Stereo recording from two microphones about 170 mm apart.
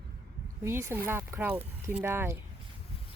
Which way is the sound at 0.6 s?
15° right (ahead or behind).